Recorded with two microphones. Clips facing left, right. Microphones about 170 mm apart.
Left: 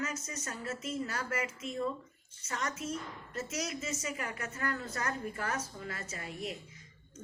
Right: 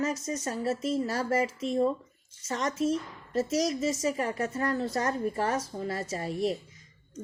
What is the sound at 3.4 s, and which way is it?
A woman's voice, 35° right (ahead or behind).